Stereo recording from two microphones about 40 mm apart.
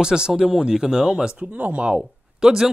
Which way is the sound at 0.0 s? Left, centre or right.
Centre.